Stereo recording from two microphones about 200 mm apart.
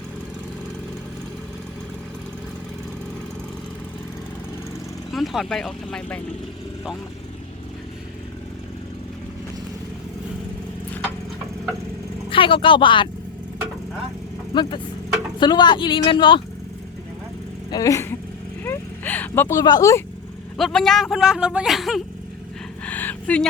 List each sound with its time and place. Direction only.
5.1 s speech: centre (ahead or behind)
12.3 s speech: 25° left (ahead or behind)
14.5 s speech: 25° left (ahead or behind)
17.7 s speech: 15° left (ahead or behind)
18.6 s vehicle: 10° left (ahead or behind)
20.6 s speech: centre (ahead or behind)
22.8 s a sound: 10° left (ahead or behind)